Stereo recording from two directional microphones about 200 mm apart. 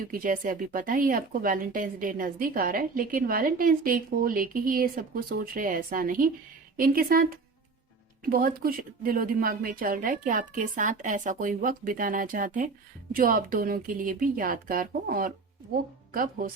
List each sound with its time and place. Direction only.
0.1 s speech: 40° right (ahead or behind)